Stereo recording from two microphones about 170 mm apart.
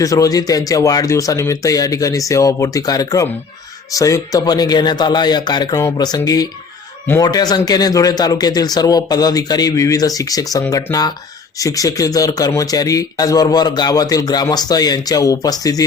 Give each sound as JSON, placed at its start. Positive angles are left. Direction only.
{"t": 0.0, "sound": "speech", "side_deg": 20}